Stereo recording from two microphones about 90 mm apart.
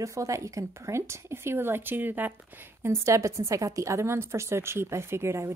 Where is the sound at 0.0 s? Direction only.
35° right (ahead or behind).